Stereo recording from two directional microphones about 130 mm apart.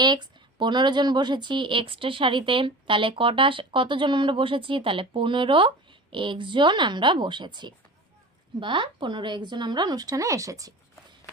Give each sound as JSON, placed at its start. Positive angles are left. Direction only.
{"t": 0.0, "sound": "speech", "side_deg": -35}